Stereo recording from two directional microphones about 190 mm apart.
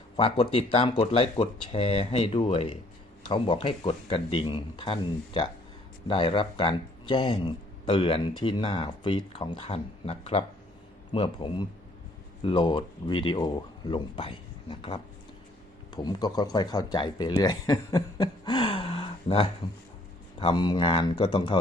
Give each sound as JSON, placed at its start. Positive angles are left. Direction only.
{"t": 0.2, "sound": "speech", "side_deg": 30}